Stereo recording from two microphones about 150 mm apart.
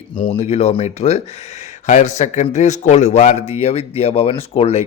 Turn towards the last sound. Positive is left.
turn(degrees=40)  # may be behind; listen again after turning